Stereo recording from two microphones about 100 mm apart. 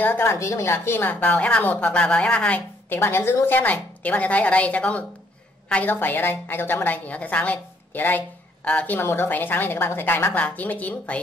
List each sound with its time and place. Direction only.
0.0 s a woman's voice: 25° left (ahead or behind)